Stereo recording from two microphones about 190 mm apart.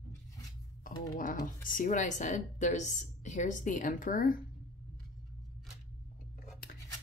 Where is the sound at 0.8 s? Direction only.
45° left (ahead or behind).